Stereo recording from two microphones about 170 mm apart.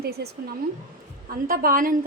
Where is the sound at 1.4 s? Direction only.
55° right (ahead or behind).